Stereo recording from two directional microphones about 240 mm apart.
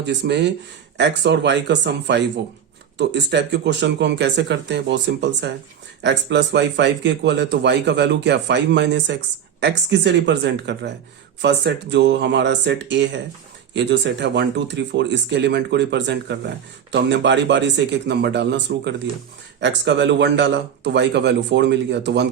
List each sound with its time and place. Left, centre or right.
0.0 s speech: right